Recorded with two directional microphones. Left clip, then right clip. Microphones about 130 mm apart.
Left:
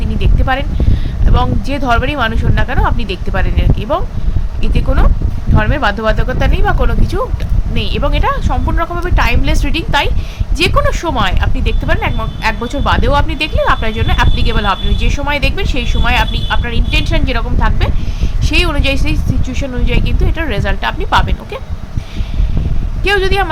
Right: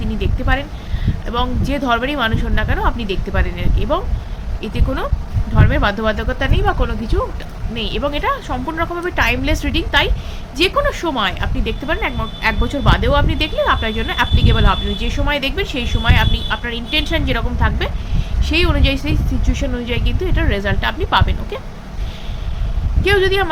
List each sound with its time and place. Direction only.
0.2 s speech: 40° left (ahead or behind)
23.0 s speech: 30° left (ahead or behind)